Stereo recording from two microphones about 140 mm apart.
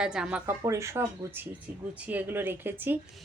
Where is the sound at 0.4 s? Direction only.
20° right (ahead or behind).